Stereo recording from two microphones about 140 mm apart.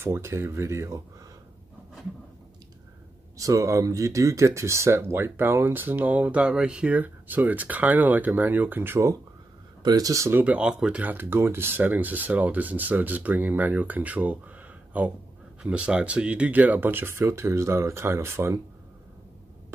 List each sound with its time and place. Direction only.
0.0 s speech: 15° right (ahead or behind)
3.3 s speech: 25° right (ahead or behind)
10.4 s speech: 10° right (ahead or behind)